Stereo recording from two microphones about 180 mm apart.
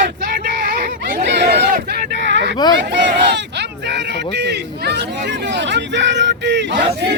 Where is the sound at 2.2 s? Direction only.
75° right (ahead or behind).